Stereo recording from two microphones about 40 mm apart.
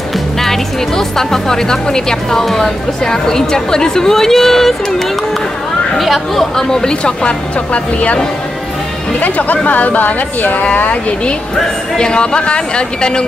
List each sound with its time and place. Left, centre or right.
0.4 s speech: centre
6.5 s speech: centre
7.7 s speech: left
9.2 s a woman's voice: left
12.0 s speech: left